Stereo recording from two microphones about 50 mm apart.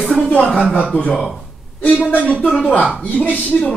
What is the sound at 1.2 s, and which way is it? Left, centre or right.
Speech, centre.